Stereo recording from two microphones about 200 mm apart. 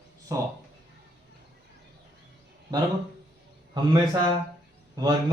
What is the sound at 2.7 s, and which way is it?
Speech, 20° right (ahead or behind).